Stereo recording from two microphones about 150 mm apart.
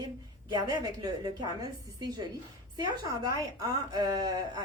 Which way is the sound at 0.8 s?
25° right (ahead or behind).